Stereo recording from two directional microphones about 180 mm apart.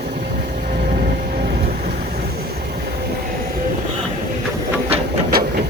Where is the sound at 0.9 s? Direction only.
55° right (ahead or behind).